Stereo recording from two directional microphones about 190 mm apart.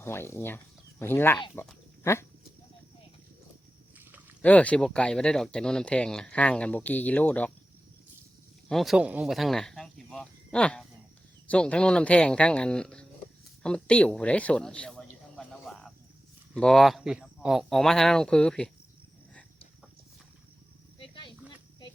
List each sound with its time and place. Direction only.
0.0 s speech: 15° left (ahead or behind)
4.4 s speech: 5° left (ahead or behind)
8.7 s speech: centre (ahead or behind)
15.4 s cricket: centre (ahead or behind)
16.6 s speech: centre (ahead or behind)
21.0 s snake: 25° left (ahead or behind)